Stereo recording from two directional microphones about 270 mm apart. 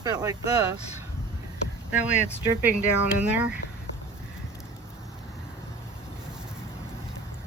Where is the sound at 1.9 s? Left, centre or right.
Centre.